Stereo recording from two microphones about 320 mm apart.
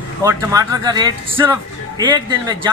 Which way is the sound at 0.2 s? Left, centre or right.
Centre.